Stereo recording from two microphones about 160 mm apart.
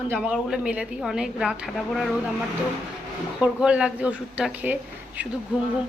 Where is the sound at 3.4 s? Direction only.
5° right (ahead or behind).